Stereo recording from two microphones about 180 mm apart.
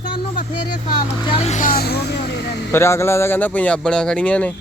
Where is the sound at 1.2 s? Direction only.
30° left (ahead or behind); by 2.4 s 65° left (ahead or behind).